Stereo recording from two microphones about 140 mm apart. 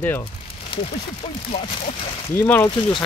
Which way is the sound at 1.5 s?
50° left (ahead or behind).